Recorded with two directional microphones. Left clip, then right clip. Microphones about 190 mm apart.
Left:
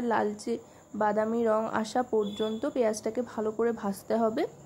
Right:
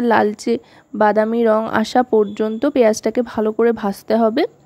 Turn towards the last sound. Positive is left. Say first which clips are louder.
# right 12 dB
turn(degrees=-40)  # may be behind; listen again after turning